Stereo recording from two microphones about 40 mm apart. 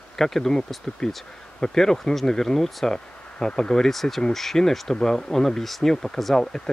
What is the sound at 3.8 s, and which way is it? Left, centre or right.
Speech, centre.